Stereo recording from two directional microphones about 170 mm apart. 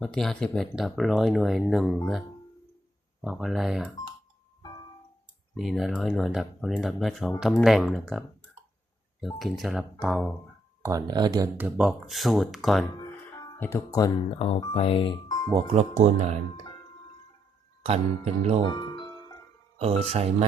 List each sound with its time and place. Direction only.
0.0 s speech: centre (ahead or behind)
3.2 s speech: centre (ahead or behind)
5.5 s speech: centre (ahead or behind)
9.2 s speech: centre (ahead or behind)
10.8 s speech: 20° right (ahead or behind)
11.5 s speech: 10° right (ahead or behind)
13.3 s speech: 20° left (ahead or behind)
14.3 s speech: 35° left (ahead or behind)
15.5 s speech: 40° right (ahead or behind)
18.7 s music: 25° left (ahead or behind)
19.8 s speech: 35° right (ahead or behind)